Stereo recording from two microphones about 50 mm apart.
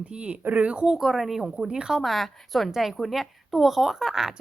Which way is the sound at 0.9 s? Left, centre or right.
Centre.